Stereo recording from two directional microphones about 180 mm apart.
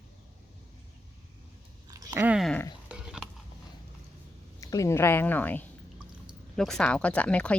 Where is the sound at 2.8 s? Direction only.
5° right (ahead or behind).